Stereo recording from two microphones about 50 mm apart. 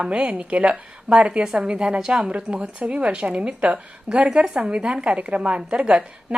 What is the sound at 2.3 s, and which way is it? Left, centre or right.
Speech, right.